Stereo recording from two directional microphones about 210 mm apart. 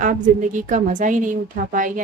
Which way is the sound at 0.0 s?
40° right (ahead or behind).